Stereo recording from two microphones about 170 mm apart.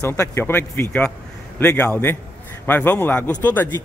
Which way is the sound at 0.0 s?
20° left (ahead or behind).